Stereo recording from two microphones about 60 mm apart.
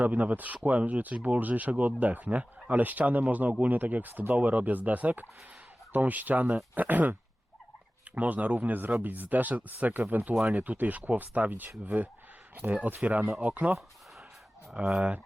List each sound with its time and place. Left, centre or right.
0.0 s speech: right
12.7 s speech: right
14.8 s speech: centre